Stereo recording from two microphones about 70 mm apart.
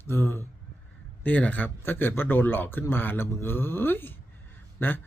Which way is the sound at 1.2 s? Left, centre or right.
Left.